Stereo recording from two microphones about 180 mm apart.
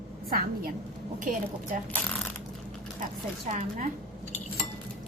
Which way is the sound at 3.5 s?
40° right (ahead or behind).